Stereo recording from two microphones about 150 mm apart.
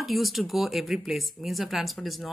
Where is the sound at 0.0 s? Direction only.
Centre (ahead or behind).